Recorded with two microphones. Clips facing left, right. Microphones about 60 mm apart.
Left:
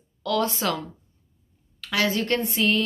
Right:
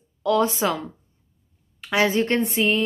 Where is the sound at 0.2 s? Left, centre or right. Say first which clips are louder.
Right 4 dB; right.